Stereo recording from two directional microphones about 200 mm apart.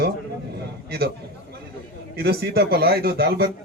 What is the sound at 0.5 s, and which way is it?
Speech, 50° right (ahead or behind).